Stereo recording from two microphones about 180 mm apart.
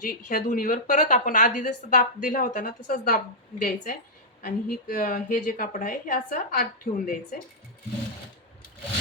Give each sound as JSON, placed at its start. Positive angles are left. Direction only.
{"t": 0.0, "sound": "a woman's voice", "side_deg": 50}